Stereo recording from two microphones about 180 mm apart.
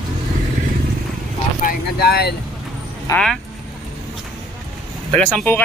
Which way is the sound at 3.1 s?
5° left (ahead or behind).